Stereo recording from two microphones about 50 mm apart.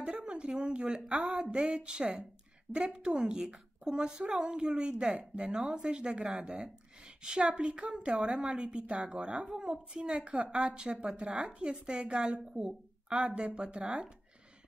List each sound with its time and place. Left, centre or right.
0.0 s a woman's voice: right
10.2 s a woman's voice: right